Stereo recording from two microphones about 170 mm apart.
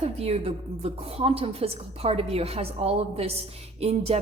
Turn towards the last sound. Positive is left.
turn(degrees=-35)  # may be behind; listen again after turning